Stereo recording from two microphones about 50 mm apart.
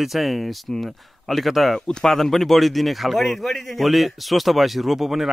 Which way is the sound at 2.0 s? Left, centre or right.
Centre.